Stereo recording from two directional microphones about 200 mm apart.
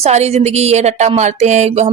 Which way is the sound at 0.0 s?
35° right (ahead or behind).